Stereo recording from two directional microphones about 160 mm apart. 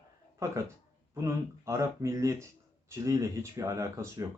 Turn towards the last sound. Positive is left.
turn(degrees=-20)  # may be behind; listen again after turning